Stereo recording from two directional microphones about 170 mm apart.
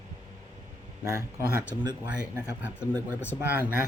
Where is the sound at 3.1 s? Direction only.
10° left (ahead or behind).